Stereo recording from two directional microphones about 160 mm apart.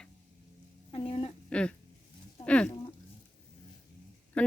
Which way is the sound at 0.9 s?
35° left (ahead or behind).